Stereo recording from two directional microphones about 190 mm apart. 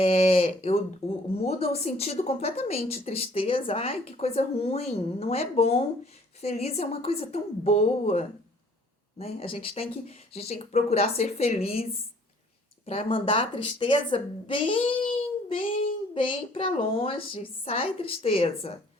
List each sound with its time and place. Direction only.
0.0 s a woman's voice: 35° left (ahead or behind)
15.1 s child singing: 30° left (ahead or behind)
16.1 s a woman's voice: 25° left (ahead or behind)